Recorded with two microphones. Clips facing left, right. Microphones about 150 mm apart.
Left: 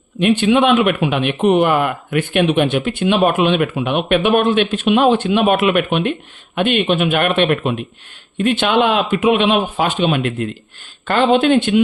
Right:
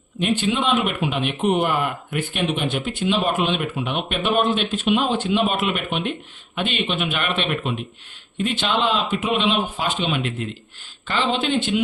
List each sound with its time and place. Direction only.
0.2 s speech: 70° left (ahead or behind)